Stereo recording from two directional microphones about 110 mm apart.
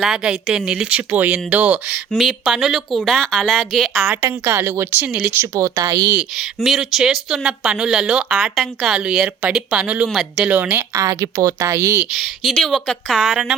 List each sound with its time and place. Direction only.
0.0 s speech: 5° right (ahead or behind)
2.0 s speech: centre (ahead or behind)
4.0 s a woman's voice: 20° right (ahead or behind)
6.1 s speech: 5° right (ahead or behind)
11.0 s a woman's voice: 30° right (ahead or behind)
12.1 s speech: centre (ahead or behind)